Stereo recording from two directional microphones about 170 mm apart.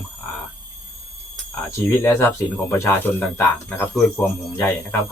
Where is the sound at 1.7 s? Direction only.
20° left (ahead or behind).